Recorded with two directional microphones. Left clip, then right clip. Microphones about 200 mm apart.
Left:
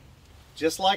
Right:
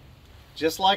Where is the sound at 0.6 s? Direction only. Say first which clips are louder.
Right 2 dB; 20° right (ahead or behind).